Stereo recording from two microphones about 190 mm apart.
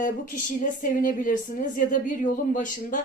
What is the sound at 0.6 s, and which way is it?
A woman's voice, 45° left (ahead or behind).